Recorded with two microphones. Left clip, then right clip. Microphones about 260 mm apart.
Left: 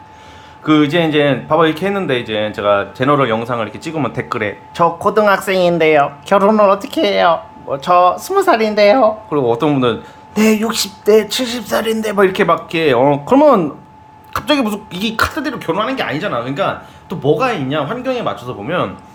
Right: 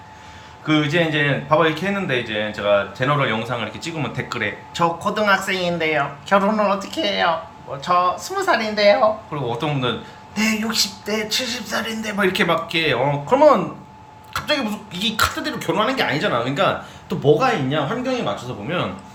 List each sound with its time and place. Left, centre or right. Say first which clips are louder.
0.6 s speech: left 6 dB; left